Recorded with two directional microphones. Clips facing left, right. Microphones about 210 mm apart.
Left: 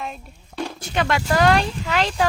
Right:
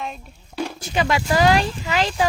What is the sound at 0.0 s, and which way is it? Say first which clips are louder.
Speech: right 1 dB; centre (ahead or behind).